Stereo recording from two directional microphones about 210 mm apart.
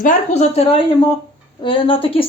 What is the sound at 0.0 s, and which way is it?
Speech, 35° left (ahead or behind).